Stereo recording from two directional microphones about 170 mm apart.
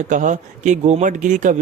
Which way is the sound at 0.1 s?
50° right (ahead or behind).